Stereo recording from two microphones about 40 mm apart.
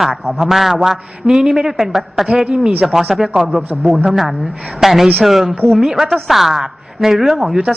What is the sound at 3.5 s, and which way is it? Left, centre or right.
A woman's voice, centre.